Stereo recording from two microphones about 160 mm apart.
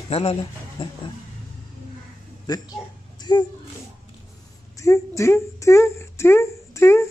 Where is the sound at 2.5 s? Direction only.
25° left (ahead or behind).